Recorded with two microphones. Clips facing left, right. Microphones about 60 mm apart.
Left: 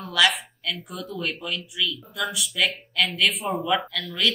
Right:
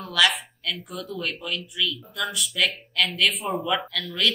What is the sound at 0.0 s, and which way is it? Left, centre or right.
Speech, centre.